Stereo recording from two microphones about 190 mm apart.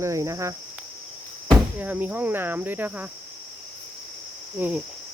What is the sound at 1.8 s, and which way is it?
Speech, 10° right (ahead or behind).